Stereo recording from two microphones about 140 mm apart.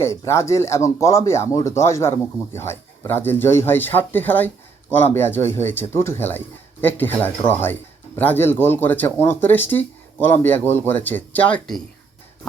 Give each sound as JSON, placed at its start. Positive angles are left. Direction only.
{"t": 0.0, "sound": "a man's voice", "side_deg": 20}